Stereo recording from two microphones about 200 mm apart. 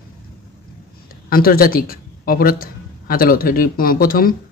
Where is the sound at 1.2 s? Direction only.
45° left (ahead or behind).